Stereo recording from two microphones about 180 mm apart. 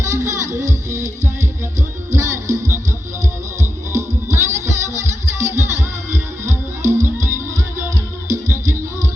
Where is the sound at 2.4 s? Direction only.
40° right (ahead or behind).